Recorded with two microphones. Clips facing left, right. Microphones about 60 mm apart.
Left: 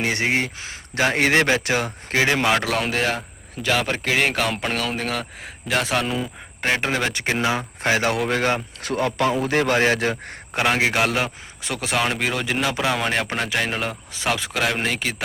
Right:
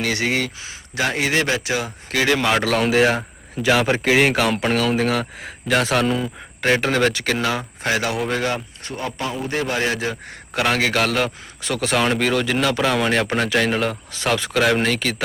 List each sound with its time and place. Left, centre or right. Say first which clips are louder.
0.0 s speech: even; left
0.6 s a man's voice: left 1 dB; left
2.1 s speech: right 1 dB; left
2.6 s speech: right 5 dB; centre
7.1 s speech: even; left
7.8 s speech: left 2 dB; left
8.3 s speech: left 1 dB; left
8.8 s speech: left 6 dB; left
9.5 s a man's voice: even; left
10.8 s speech: right 1 dB; centre